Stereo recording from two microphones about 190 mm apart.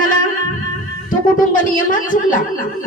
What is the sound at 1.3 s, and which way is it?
Speech, 45° left (ahead or behind).